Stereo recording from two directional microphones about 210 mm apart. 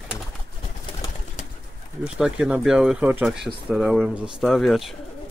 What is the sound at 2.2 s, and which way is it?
Speech, 5° right (ahead or behind).